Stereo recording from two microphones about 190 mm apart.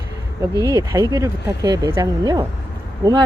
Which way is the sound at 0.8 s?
20° right (ahead or behind).